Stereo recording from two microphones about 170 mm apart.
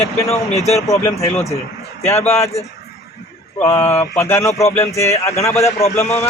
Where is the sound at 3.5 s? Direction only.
10° left (ahead or behind).